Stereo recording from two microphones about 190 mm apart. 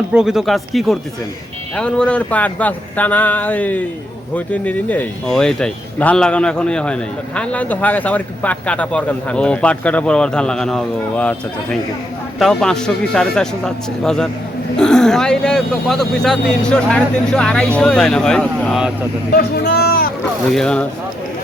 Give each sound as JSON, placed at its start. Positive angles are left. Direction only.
{"t": 0.1, "sound": "speech", "side_deg": -5}
{"t": 19.3, "sound": "speech", "side_deg": 60}
{"t": 20.5, "sound": "speech", "side_deg": 5}